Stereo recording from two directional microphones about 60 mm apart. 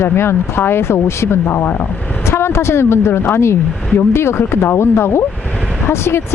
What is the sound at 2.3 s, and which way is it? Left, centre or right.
Speech, left.